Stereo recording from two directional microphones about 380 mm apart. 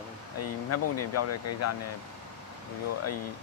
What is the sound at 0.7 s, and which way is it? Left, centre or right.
Speech, left.